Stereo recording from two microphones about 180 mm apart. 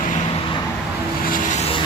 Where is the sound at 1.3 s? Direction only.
40° left (ahead or behind).